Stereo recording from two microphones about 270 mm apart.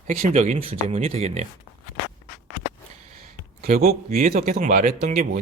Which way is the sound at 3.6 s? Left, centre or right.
Right.